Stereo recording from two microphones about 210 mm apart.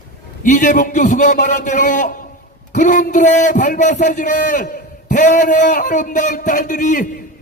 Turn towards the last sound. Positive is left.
turn(degrees=40)  # may be behind; listen again after turning